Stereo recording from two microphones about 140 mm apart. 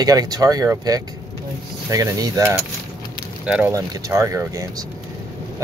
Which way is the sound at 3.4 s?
5° right (ahead or behind).